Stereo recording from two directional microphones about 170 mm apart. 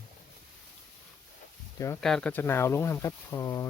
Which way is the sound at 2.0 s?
5° left (ahead or behind).